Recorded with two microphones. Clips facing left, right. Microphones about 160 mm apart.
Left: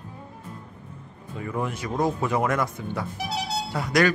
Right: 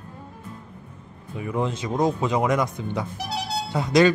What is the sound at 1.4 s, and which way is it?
Speech, 20° right (ahead or behind).